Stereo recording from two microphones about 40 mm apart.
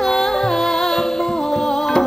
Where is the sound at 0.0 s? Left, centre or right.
Centre.